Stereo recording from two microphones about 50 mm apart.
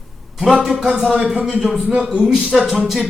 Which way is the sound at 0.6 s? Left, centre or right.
Centre.